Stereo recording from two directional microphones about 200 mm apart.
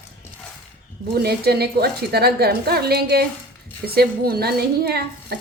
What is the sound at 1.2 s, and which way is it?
A woman's voice, 50° right (ahead or behind).